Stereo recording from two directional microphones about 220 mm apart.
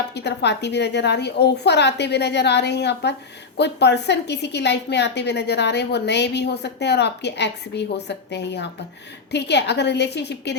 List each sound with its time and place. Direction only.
0.1 s a woman's voice: 50° left (ahead or behind)